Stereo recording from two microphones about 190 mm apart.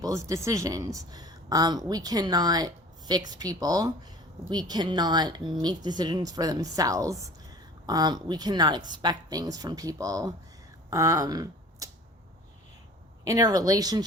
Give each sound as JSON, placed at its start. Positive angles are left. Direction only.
{"t": 0.0, "sound": "speech", "side_deg": -15}
{"t": 13.2, "sound": "speech", "side_deg": -20}